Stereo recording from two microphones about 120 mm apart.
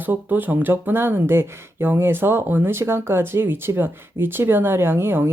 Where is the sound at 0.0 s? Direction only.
15° right (ahead or behind).